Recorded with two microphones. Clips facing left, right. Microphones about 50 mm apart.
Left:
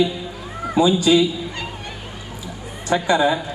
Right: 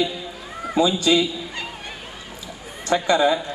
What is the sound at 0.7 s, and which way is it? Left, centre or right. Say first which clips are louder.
Speech: left 3 dB; centre.